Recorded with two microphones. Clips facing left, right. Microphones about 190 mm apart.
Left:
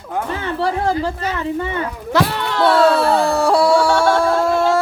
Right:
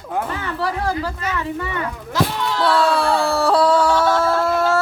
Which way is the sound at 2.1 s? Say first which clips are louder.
Left 3 dB; 65° left (ahead or behind).